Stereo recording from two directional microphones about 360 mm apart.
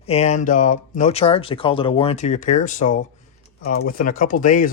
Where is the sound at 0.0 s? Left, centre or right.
Centre.